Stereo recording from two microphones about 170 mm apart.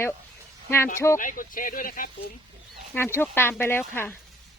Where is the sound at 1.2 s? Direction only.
55° left (ahead or behind).